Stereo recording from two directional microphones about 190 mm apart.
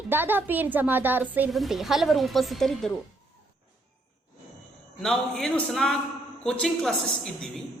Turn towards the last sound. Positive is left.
turn(degrees=5)  # may be behind; listen again after turning